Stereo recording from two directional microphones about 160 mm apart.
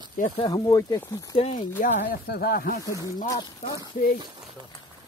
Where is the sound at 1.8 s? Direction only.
65° left (ahead or behind).